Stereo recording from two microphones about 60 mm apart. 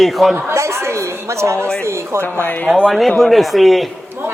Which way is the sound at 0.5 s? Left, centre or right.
Right.